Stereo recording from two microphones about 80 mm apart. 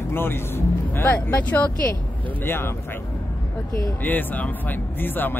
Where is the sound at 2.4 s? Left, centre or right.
Left.